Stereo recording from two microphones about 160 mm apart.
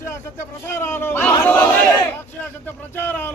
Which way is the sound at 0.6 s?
15° left (ahead or behind).